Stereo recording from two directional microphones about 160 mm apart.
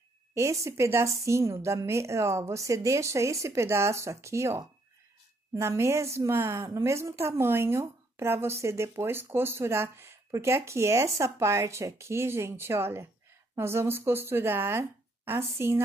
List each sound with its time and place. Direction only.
0.3 s a woman's voice: 20° right (ahead or behind)